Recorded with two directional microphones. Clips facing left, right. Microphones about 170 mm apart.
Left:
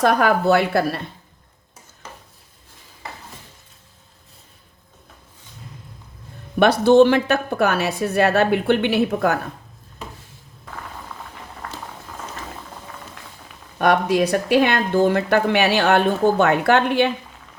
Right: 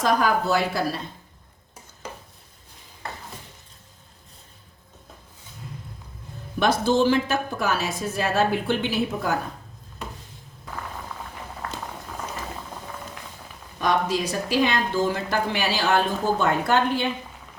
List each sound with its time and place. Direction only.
0.0 s speech: 60° left (ahead or behind)
6.6 s speech: 65° left (ahead or behind)
13.7 s speech: 60° left (ahead or behind)